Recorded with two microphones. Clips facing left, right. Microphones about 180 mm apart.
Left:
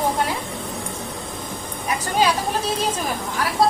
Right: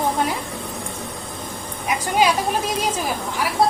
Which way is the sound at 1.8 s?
10° right (ahead or behind).